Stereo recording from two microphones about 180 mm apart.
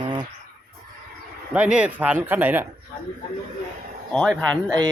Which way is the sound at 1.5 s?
5° right (ahead or behind).